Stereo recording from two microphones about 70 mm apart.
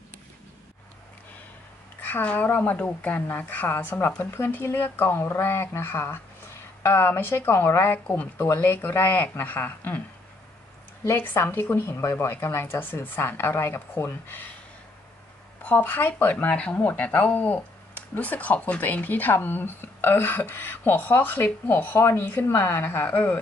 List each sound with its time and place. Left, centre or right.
2.0 s speech: left
11.1 s speech: left
15.6 s speech: left